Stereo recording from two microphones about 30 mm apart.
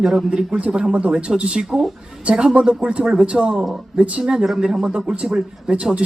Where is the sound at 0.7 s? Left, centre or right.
Right.